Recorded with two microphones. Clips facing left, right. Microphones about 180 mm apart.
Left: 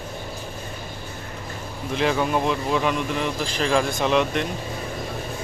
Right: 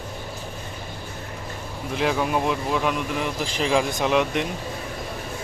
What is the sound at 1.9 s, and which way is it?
Speech, 5° right (ahead or behind).